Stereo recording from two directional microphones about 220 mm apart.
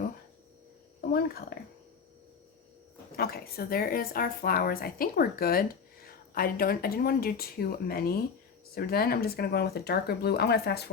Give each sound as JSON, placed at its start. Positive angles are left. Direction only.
{"t": 1.1, "sound": "speech", "side_deg": 45}
{"t": 3.2, "sound": "speech", "side_deg": 45}